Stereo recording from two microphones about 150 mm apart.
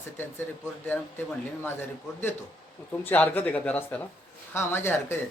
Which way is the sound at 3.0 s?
10° left (ahead or behind).